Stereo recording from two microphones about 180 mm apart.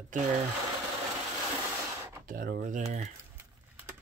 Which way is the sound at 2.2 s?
50° right (ahead or behind).